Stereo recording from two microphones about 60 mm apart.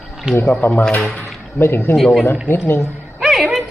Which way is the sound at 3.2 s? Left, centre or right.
Centre.